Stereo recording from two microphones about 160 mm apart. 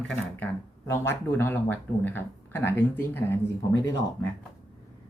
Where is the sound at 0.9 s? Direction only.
15° left (ahead or behind).